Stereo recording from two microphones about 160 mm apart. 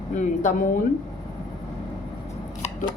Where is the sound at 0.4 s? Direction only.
50° left (ahead or behind).